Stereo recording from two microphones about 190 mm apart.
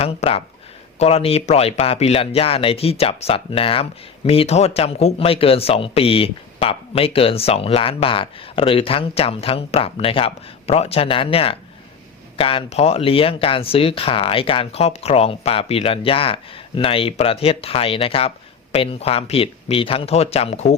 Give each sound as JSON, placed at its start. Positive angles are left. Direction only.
{"t": 0.0, "sound": "speech", "side_deg": 30}